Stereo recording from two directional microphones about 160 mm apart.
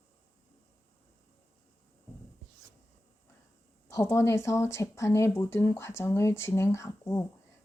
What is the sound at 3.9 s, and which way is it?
Speech, 20° left (ahead or behind).